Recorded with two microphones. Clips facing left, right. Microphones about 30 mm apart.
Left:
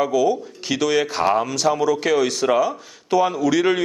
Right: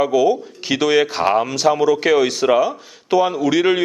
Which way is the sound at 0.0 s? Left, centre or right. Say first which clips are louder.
Right 3 dB; centre.